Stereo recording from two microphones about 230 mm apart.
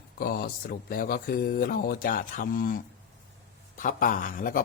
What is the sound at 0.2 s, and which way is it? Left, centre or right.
Speech, left.